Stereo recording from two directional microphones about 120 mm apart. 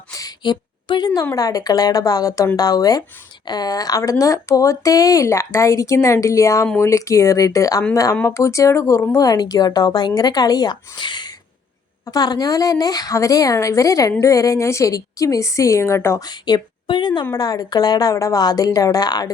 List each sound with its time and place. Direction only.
0.1 s a sound: 30° left (ahead or behind)
1.4 s a woman's voice: 30° left (ahead or behind)
16.2 s a woman's voice: 35° left (ahead or behind)